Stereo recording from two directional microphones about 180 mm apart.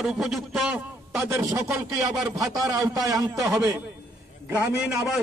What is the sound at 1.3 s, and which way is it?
A man's voice, 15° right (ahead or behind).